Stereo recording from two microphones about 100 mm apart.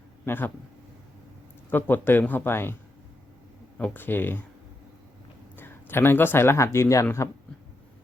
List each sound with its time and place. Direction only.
0.3 s speech: 20° left (ahead or behind)
1.7 s speech: 20° left (ahead or behind)
3.8 s speech: 15° left (ahead or behind)
5.5 s speech: 20° left (ahead or behind)